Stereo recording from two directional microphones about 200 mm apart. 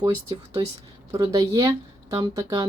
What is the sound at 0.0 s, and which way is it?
Speech, 20° right (ahead or behind).